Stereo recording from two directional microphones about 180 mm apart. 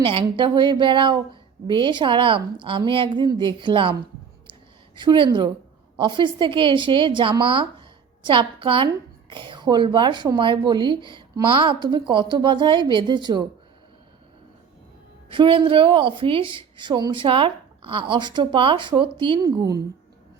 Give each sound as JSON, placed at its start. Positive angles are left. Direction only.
{"t": 0.0, "sound": "a woman's voice", "side_deg": -30}
{"t": 4.9, "sound": "a woman's voice", "side_deg": -25}
{"t": 15.3, "sound": "a woman's voice", "side_deg": -30}